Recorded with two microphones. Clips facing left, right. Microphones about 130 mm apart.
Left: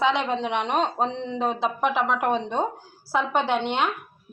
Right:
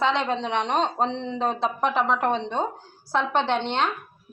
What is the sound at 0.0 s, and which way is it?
A woman's voice, 5° left (ahead or behind).